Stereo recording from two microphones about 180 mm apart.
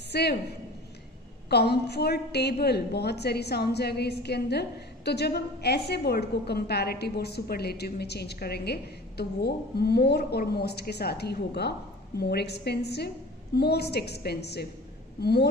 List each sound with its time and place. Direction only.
0.1 s a woman's voice: 65° left (ahead or behind)